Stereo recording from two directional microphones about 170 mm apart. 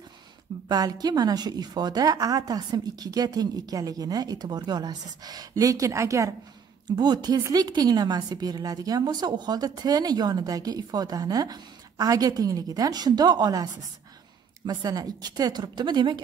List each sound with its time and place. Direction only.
0.7 s a woman's voice: 20° right (ahead or behind)
14.7 s a woman's voice: 20° right (ahead or behind)